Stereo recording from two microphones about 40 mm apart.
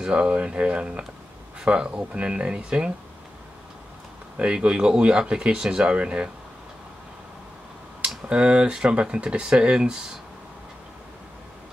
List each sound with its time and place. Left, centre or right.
0.0 s speech: right
4.4 s speech: right
8.3 s speech: right